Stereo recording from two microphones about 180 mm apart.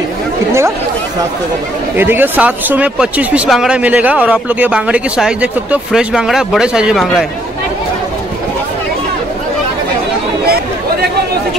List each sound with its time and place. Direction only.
2.0 s speech: 10° right (ahead or behind)
10.4 s chatter: 60° right (ahead or behind)